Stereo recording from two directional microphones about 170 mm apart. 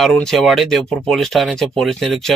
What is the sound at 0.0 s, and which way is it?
Speech, 5° left (ahead or behind).